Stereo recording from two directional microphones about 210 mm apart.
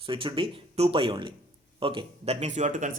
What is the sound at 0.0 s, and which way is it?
Speech, 25° right (ahead or behind).